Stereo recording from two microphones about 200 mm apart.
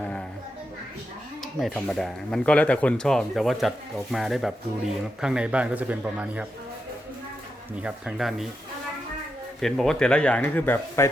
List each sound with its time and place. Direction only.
1.5 s a man's voice: centre (ahead or behind)
7.8 s speech: 5° right (ahead or behind)
9.6 s speech: centre (ahead or behind)